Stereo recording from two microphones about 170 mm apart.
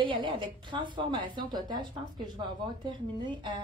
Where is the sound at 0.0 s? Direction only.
30° right (ahead or behind).